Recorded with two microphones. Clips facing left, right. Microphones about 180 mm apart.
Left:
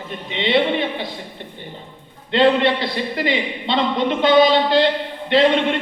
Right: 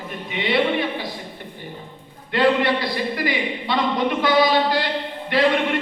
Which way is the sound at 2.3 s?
25° left (ahead or behind).